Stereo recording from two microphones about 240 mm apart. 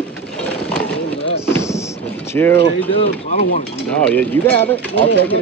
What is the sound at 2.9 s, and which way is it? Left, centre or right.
Speech, left.